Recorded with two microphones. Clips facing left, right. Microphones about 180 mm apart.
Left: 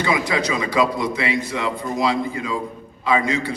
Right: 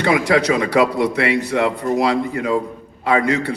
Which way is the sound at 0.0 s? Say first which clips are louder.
Right 5 dB; 70° right (ahead or behind).